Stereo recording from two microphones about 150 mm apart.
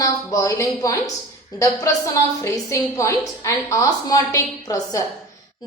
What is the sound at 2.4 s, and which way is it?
A woman's voice, 20° left (ahead or behind).